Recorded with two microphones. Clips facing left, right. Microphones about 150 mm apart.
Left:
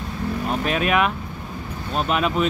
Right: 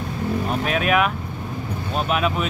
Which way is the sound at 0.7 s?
Centre (ahead or behind).